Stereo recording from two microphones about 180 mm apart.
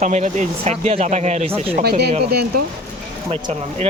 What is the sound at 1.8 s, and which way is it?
Speech, 60° right (ahead or behind).